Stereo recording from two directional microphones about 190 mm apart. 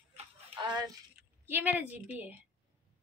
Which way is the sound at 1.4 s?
10° right (ahead or behind).